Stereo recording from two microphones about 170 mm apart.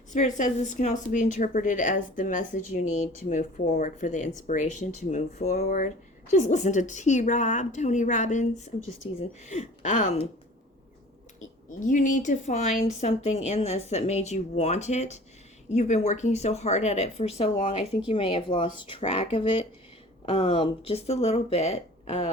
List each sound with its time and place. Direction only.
0.1 s a woman's voice: 45° left (ahead or behind)
5.6 s a woman's voice: 55° left (ahead or behind)
6.3 s a woman's voice: 45° left (ahead or behind)
11.8 s speech: 50° left (ahead or behind)